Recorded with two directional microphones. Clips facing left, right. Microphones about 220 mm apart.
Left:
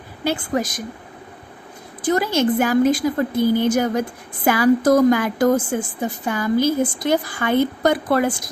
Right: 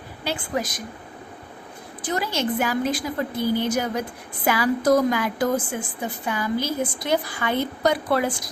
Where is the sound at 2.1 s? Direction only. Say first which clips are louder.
Left 7 dB; 45° left (ahead or behind).